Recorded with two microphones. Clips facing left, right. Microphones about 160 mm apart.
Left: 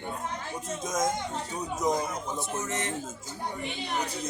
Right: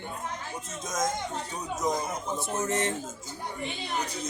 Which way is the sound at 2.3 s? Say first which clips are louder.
Right 7 dB; 30° right (ahead or behind).